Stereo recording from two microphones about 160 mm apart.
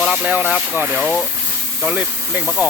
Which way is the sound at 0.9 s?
5° left (ahead or behind).